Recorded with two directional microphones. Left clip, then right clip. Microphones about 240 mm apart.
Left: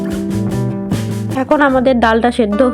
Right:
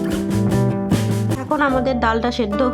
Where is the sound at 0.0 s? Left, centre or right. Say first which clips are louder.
Left 1 dB; centre.